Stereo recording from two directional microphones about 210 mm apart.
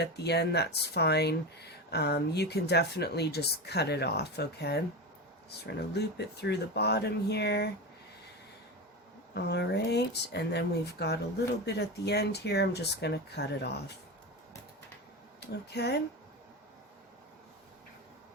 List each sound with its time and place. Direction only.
0.0 s speech: 50° left (ahead or behind)
9.3 s speech: 55° left (ahead or behind)
15.4 s speech: 50° left (ahead or behind)